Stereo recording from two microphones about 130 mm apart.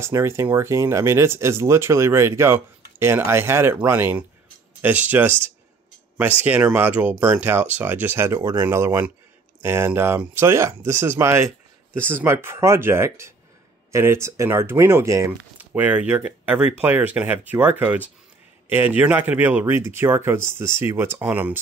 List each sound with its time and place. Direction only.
0.0 s speech: 20° right (ahead or behind)
15.5 s speech: 10° right (ahead or behind)